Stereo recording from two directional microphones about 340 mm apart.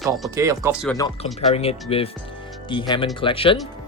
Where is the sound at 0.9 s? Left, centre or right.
Centre.